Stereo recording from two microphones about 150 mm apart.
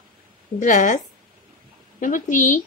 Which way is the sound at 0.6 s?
55° left (ahead or behind).